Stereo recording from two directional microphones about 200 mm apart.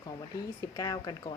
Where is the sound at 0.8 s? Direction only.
20° left (ahead or behind).